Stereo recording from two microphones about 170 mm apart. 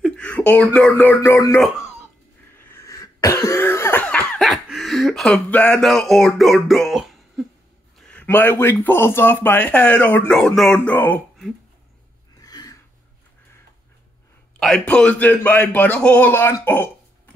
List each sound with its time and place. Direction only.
0.0 s a sound: 5° left (ahead or behind)
0.7 s speech: 10° left (ahead or behind)
2.7 s cough: 20° left (ahead or behind); by 7.4 s centre (ahead or behind)
8.1 s a man's voice: 10° left (ahead or behind)
12.4 s a sound: 20° left (ahead or behind)
14.6 s speech: 5° left (ahead or behind)